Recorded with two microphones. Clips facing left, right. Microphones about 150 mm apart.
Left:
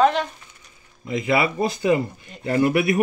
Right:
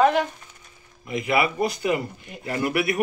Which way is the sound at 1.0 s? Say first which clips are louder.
Left 2 dB; 25° left (ahead or behind).